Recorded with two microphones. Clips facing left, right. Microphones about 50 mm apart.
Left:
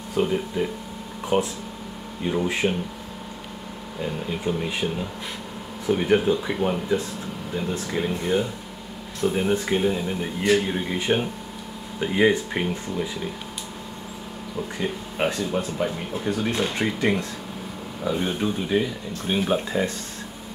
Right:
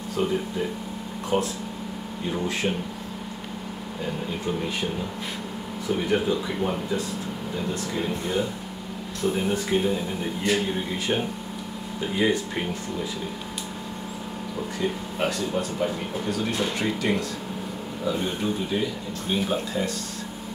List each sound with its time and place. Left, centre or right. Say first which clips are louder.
0.2 s speech: left 3 dB; left; by 2.7 s centre
4.5 s speech: left 3 dB; centre
5.9 s speech: left 4 dB; left
9.2 s speech: left 3 dB; centre
14.8 s speech: left 1 dB; left
18.7 s speech: left 5 dB; left
19.2 s speech: left 3 dB; left